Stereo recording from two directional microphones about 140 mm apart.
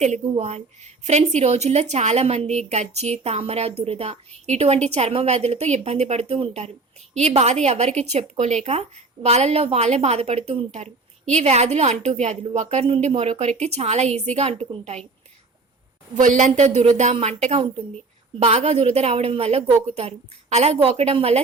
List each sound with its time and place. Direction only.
0.0 s a woman's voice: 55° right (ahead or behind)
16.1 s a woman's voice: 60° right (ahead or behind); by 21.4 s 45° right (ahead or behind)